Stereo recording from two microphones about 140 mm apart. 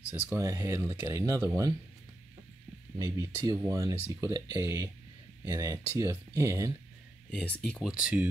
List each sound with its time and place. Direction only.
0.3 s speech: 20° right (ahead or behind)
3.0 s speech: 25° right (ahead or behind)
7.2 s speech: 5° left (ahead or behind)
8.0 s speech: 10° right (ahead or behind)